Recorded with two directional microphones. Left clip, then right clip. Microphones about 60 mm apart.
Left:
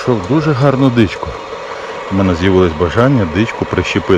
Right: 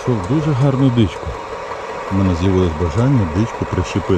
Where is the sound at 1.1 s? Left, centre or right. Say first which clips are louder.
Left 3 dB; centre.